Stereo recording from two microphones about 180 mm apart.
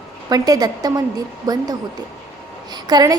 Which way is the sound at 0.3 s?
20° right (ahead or behind).